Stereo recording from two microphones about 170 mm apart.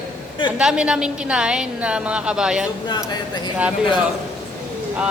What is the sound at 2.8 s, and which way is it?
Speech, 25° left (ahead or behind).